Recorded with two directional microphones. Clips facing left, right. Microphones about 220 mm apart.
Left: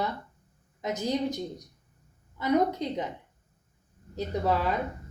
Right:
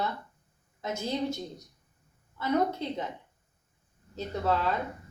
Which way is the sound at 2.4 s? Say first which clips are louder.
Left 3 dB; 15° left (ahead or behind).